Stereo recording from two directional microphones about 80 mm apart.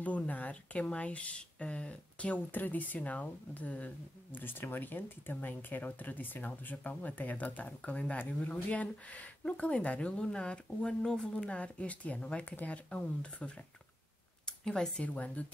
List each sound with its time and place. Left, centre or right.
0.0 s speech: centre